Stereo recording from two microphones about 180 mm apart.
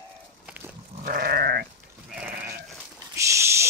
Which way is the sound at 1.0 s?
60° right (ahead or behind).